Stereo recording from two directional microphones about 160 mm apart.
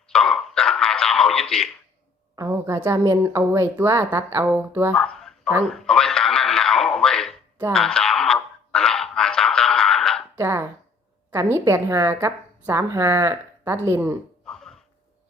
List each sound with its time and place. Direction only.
0.1 s throat clearing: 5° left (ahead or behind)
2.3 s a woman's voice: 20° right (ahead or behind)
4.9 s speech: 5° left (ahead or behind)
5.7 s a sound: 5° left (ahead or behind)
10.3 s a woman's voice: 15° right (ahead or behind)
14.4 s a sound: centre (ahead or behind)